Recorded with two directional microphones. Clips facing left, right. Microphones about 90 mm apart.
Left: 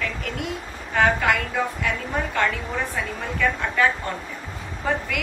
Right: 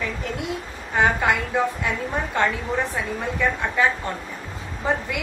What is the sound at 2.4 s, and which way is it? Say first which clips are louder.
A woman's voice: right 3 dB; 20° right (ahead or behind).